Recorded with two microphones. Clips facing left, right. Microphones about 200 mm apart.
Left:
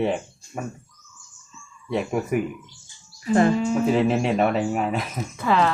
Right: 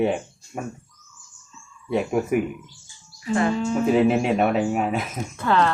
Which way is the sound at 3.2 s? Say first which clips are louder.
Left 4 dB; 40° left (ahead or behind).